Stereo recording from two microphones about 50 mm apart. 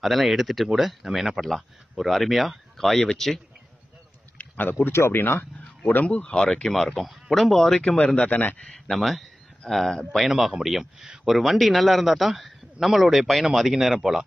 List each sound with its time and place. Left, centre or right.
0.0 s speech: centre
4.4 s a sound: left
5.1 s speech: left
5.9 s speech: left
6.7 s speech: centre
8.3 s a man's voice: left
8.7 s speech: centre